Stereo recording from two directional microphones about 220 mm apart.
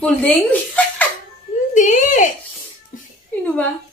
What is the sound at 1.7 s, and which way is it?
Speech, 35° left (ahead or behind).